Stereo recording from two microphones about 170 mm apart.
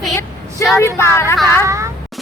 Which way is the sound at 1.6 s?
15° right (ahead or behind).